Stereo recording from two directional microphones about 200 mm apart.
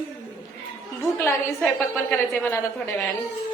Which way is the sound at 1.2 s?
10° left (ahead or behind).